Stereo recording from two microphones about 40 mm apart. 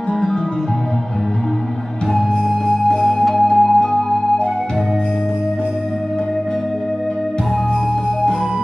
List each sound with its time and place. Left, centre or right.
2.7 s flute: centre